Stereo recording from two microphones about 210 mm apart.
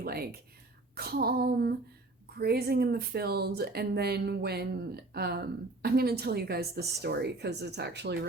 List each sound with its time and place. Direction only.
0.0 s speech: 45° right (ahead or behind)